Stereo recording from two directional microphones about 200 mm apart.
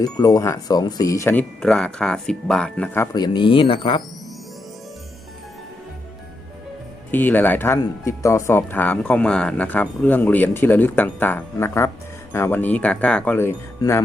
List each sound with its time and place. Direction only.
0.0 s speech: 20° left (ahead or behind)
7.1 s speech: 10° left (ahead or behind)